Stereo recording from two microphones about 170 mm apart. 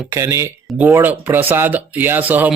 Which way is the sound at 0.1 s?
20° right (ahead or behind).